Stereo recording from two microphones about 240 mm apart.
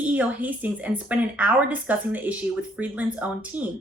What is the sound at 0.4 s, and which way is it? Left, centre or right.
Speech, centre.